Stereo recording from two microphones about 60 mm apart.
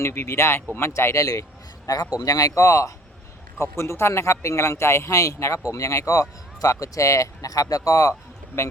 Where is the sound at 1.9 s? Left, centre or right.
Left.